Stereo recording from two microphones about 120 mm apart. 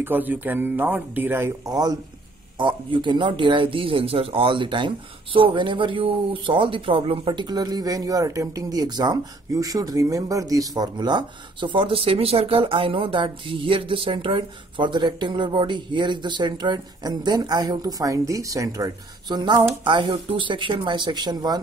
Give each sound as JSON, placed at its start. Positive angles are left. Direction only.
{"t": 0.0, "sound": "speech", "side_deg": -15}
{"t": 1.7, "sound": "speech", "side_deg": -35}